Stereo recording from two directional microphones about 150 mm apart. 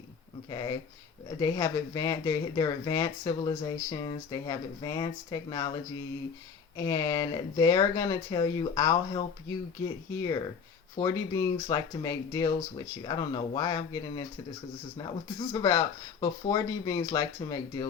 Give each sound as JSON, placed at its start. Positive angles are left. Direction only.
{"t": 0.5, "sound": "speech", "side_deg": 25}
{"t": 6.7, "sound": "speech", "side_deg": 25}